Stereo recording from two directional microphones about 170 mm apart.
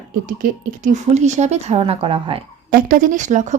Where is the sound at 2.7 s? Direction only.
55° right (ahead or behind).